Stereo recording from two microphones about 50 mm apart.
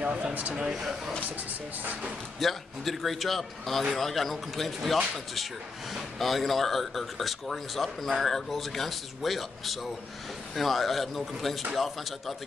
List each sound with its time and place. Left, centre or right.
0.0 s speech: right
0.6 s speech: centre
2.4 s speech: centre